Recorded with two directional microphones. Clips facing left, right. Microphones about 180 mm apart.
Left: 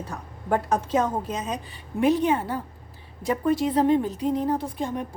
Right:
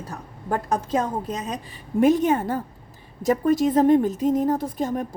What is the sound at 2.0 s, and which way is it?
A woman's voice, 45° right (ahead or behind).